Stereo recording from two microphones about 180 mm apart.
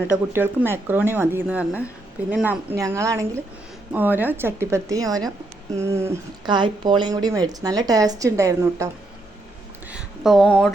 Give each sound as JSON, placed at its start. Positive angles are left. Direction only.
{"t": 0.3, "sound": "speech", "side_deg": -10}
{"t": 6.5, "sound": "speech", "side_deg": -25}
{"t": 9.9, "sound": "a sound", "side_deg": 0}